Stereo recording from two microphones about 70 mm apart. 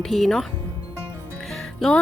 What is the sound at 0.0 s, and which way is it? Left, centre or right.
Speech, centre.